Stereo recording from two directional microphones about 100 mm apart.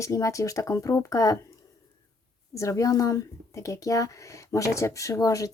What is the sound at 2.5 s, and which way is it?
Speech, 30° left (ahead or behind).